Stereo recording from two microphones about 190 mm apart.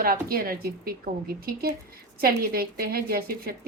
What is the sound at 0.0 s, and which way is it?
A woman's voice, 50° right (ahead or behind).